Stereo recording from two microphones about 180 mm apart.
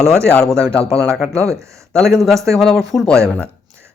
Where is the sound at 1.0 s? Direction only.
Centre (ahead or behind).